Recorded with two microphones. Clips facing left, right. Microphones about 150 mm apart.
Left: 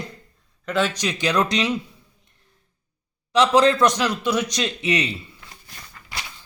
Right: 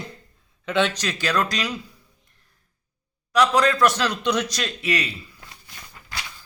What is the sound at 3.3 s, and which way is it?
A man's voice, 25° left (ahead or behind).